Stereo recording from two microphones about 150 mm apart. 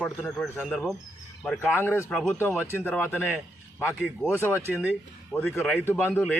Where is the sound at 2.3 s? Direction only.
15° left (ahead or behind).